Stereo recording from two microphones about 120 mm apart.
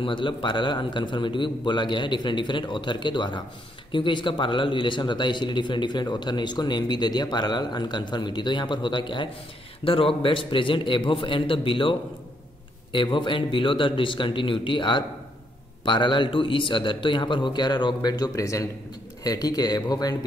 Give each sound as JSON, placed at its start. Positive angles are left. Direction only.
{"t": 0.0, "sound": "a man's voice", "side_deg": 45}